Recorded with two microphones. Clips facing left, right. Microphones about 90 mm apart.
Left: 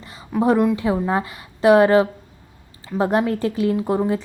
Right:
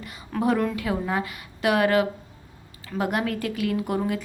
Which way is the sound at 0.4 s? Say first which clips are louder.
Left 6 dB; 20° left (ahead or behind).